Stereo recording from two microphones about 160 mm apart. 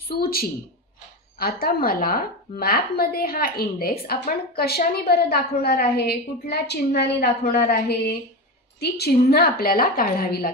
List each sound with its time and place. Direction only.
0.1 s a woman's voice: 70° left (ahead or behind)
8.7 s a woman's voice: 85° left; by 10.5 s 65° left (ahead or behind)